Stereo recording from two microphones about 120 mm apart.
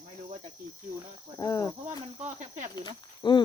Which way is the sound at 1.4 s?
25° left (ahead or behind).